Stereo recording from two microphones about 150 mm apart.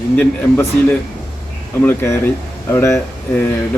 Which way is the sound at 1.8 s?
15° left (ahead or behind).